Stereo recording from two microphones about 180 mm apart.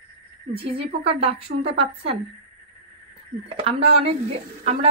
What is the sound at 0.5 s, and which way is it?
A woman's voice, 30° right (ahead or behind).